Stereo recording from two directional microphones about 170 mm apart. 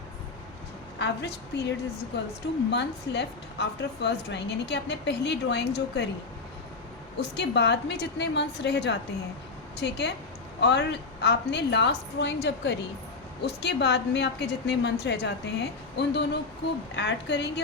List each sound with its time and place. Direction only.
0.9 s a woman's voice: 85° left
2.6 s a woman's voice: 90° left
7.2 s a woman's voice: 85° left
13.4 s a woman's voice: 80° left